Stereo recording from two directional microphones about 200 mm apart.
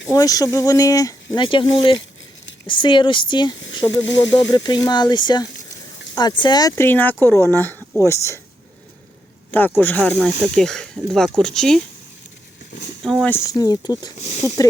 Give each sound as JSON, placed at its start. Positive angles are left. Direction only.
{"t": 0.1, "sound": "speech", "side_deg": 20}
{"t": 4.0, "sound": "speech", "side_deg": 65}
{"t": 4.3, "sound": "speech", "side_deg": 20}
{"t": 9.5, "sound": "speech", "side_deg": 10}
{"t": 13.0, "sound": "speech", "side_deg": 0}
{"t": 13.3, "sound": "speech", "side_deg": 20}